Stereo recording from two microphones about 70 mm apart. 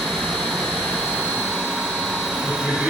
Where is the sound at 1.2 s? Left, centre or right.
Centre.